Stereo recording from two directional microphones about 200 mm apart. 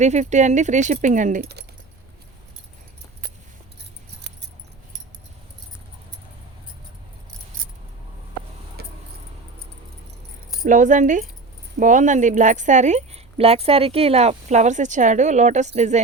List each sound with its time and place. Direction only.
0.0 s a woman's voice: 35° right (ahead or behind)
7.6 s keys jangling: 45° right (ahead or behind)
8.8 s vehicle: 50° right (ahead or behind)
10.6 s a woman's voice: 40° right (ahead or behind)